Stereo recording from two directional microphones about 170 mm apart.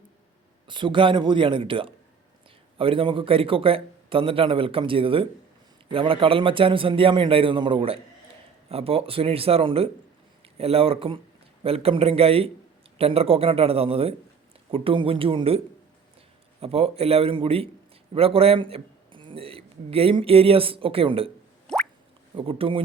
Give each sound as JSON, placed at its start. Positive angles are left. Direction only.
{"t": 0.7, "sound": "a man's voice", "side_deg": -30}
{"t": 21.7, "sound": "a sound", "side_deg": 5}
{"t": 22.4, "sound": "a man's voice", "side_deg": -35}